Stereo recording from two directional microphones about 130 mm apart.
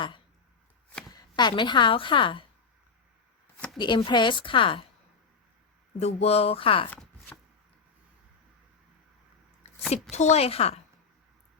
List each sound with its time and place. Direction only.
1.0 s chopping: 30° left (ahead or behind)
3.8 s a woman's voice: 35° left (ahead or behind)
6.0 s speech: 55° left (ahead or behind)
9.9 s speech: 60° left (ahead or behind)